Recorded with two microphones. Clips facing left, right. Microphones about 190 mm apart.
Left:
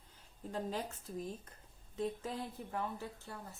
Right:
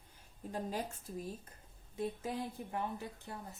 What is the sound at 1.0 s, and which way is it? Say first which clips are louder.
A woman's voice: left 1 dB; 10° right (ahead or behind).